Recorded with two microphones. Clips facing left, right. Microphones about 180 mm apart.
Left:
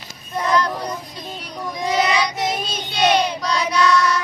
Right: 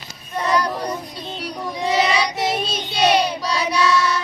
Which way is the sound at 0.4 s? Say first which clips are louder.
Even; 10° right (ahead or behind).